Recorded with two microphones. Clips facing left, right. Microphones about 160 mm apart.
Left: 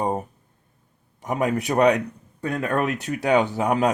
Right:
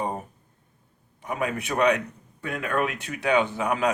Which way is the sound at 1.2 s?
40° left (ahead or behind).